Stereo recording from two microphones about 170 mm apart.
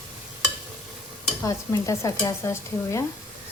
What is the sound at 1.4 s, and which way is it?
Speech, 20° left (ahead or behind).